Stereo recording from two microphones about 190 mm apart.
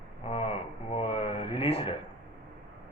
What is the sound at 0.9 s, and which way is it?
Speech, 30° left (ahead or behind).